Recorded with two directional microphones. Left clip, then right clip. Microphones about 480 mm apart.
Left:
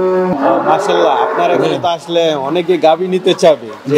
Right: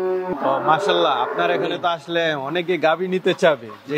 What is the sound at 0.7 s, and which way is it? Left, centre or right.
A man's voice, right.